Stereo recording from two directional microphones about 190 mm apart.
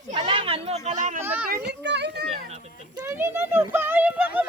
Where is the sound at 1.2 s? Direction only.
10° right (ahead or behind).